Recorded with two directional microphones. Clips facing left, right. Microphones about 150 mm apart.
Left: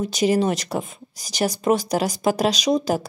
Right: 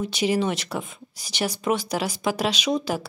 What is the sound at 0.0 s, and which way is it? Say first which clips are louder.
Speech: left 4 dB; 40° left (ahead or behind).